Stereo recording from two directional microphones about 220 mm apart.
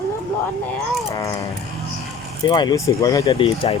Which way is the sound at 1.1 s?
15° left (ahead or behind).